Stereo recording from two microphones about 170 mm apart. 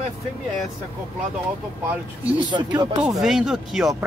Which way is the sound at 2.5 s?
25° right (ahead or behind).